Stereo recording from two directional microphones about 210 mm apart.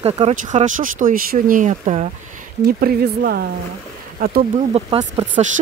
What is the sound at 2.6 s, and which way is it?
Speech, 45° right (ahead or behind).